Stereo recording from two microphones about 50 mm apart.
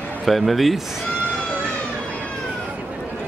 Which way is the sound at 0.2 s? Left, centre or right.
Centre.